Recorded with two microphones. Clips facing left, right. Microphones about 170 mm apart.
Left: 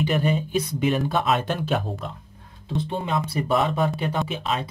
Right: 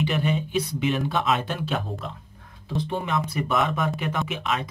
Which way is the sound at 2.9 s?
30° left (ahead or behind).